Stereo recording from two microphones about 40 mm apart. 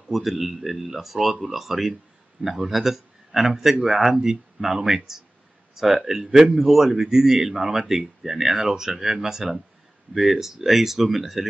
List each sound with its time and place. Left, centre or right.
0.1 s speech: centre